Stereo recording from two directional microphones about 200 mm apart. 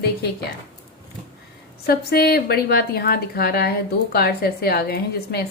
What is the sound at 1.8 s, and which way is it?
A woman's voice, 50° left (ahead or behind).